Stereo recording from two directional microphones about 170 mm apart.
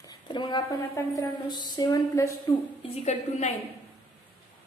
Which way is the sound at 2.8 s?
40° left (ahead or behind).